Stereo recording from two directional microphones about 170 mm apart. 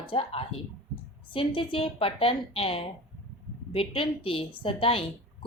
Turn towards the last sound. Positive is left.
turn(degrees=30)  # may be behind; listen again after turning